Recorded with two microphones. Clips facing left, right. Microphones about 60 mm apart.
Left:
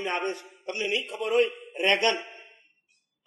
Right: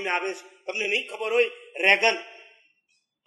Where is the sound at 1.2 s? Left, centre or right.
Right.